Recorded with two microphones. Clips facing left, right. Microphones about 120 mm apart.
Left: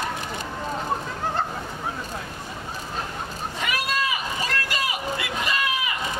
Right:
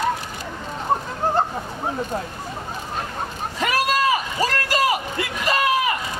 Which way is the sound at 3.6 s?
40° right (ahead or behind).